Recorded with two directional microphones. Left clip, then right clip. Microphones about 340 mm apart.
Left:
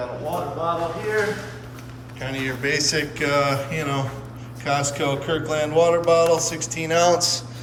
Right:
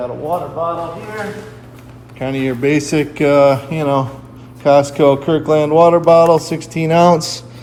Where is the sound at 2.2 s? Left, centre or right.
Centre.